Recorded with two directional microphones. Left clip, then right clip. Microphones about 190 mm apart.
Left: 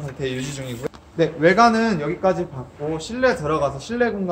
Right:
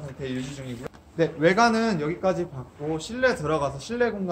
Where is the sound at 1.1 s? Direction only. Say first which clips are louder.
Left 5 dB; 25° right (ahead or behind).